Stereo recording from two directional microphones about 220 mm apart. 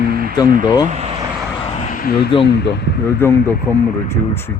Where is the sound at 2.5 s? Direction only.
50° left (ahead or behind).